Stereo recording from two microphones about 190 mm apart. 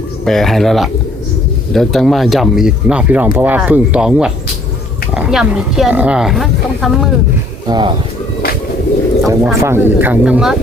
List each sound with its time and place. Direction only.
0.3 s speech: centre (ahead or behind)
7.7 s speech: 25° right (ahead or behind)
9.2 s speech: 15° right (ahead or behind)